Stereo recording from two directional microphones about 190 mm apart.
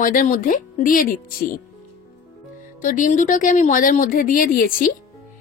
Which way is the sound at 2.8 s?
45° left (ahead or behind).